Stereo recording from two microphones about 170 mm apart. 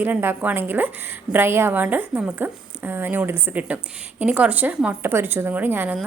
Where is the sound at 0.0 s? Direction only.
10° right (ahead or behind).